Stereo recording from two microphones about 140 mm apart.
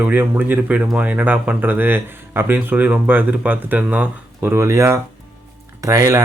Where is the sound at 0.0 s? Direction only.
10° right (ahead or behind).